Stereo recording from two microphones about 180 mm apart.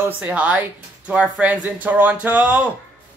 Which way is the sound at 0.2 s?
5° right (ahead or behind).